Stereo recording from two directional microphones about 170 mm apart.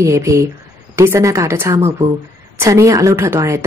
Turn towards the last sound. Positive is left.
turn(degrees=-15)  # may be behind; listen again after turning